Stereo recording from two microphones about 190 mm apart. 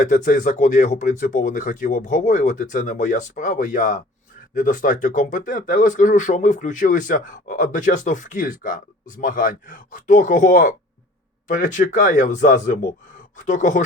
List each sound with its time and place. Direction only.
0.0 s speech: 40° left (ahead or behind)